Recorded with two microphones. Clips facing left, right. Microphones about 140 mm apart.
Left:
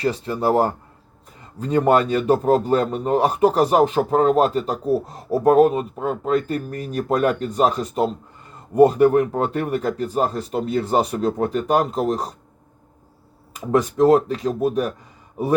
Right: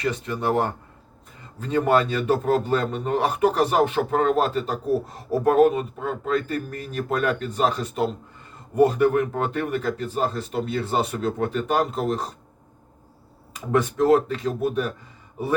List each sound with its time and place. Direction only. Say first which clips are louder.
0.0 s a man's voice: left 4 dB; 35° left (ahead or behind)
13.5 s a man's voice: left 3 dB; 35° left (ahead or behind)